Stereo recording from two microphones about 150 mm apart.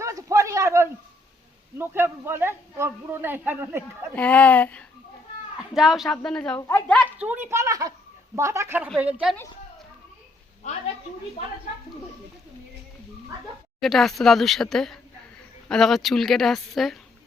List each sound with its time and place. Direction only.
0.0 s a sound: 20° right (ahead or behind)
1.8 s a man's voice: 15° right (ahead or behind)
4.1 s speech: 10° left (ahead or behind)
5.7 s speech: centre (ahead or behind)
7.2 s a woman's voice: 15° right (ahead or behind)
13.8 s speech: centre (ahead or behind)